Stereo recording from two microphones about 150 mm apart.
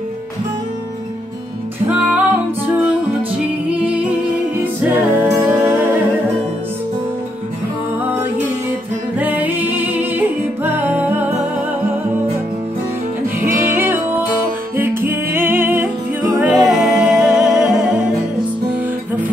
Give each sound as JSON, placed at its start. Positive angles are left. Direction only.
{"t": 1.9, "sound": "music", "side_deg": -10}
{"t": 3.7, "sound": "music", "side_deg": -10}
{"t": 9.2, "sound": "music", "side_deg": -10}
{"t": 13.7, "sound": "music", "side_deg": -15}
{"t": 16.6, "sound": "humming", "side_deg": -5}